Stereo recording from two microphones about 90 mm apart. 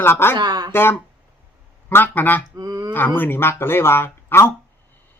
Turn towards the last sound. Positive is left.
turn(degrees=25)  # may be behind; listen again after turning